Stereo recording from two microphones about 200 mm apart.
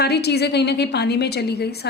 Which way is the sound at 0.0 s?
55° left (ahead or behind).